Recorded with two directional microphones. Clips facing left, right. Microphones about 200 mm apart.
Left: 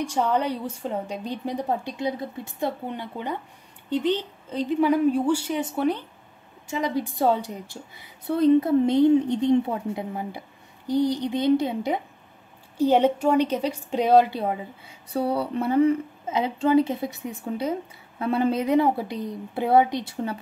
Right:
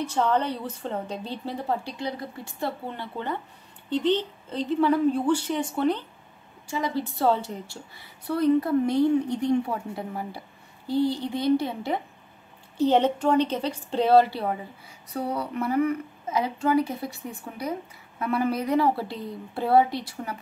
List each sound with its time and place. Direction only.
0.0 s a woman's voice: 10° left (ahead or behind)
15.1 s a woman's voice: 30° left (ahead or behind)